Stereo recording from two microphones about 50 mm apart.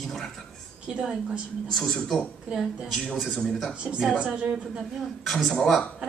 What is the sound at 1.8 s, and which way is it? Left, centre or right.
Speech, centre.